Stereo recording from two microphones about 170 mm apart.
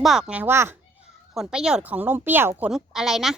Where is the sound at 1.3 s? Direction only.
5° right (ahead or behind).